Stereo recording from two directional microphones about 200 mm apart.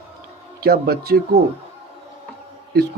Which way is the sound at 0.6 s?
50° right (ahead or behind).